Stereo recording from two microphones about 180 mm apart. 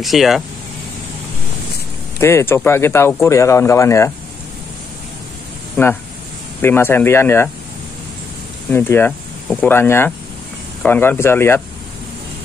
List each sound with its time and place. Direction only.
0.0 s speech: centre (ahead or behind)
2.1 s speech: 15° left (ahead or behind)
5.8 s speech: 15° left (ahead or behind)
8.6 s speech: 15° left (ahead or behind)